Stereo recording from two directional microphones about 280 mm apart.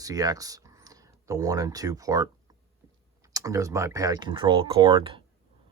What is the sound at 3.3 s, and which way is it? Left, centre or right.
Speech, centre.